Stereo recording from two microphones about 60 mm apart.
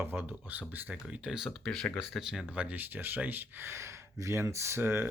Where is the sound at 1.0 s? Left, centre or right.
Centre.